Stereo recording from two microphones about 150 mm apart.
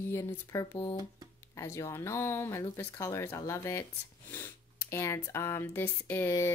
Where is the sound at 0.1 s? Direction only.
15° left (ahead or behind).